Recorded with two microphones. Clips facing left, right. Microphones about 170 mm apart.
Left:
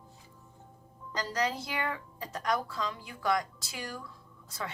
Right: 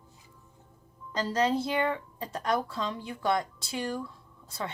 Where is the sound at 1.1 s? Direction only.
30° right (ahead or behind).